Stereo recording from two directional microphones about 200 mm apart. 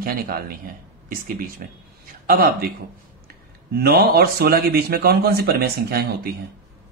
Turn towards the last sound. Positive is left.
turn(degrees=-50)  # may be behind; listen again after turning